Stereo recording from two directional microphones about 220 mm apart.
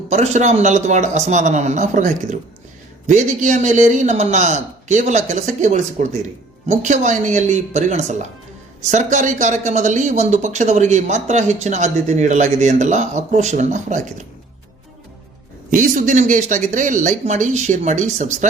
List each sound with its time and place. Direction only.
0.1 s speech: 30° right (ahead or behind)
15.7 s speech: 35° right (ahead or behind)